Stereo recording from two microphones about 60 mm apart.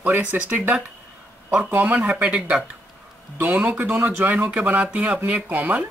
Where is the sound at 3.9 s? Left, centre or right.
Right.